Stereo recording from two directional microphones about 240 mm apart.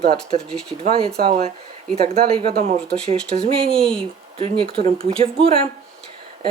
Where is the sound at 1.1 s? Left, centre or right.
Right.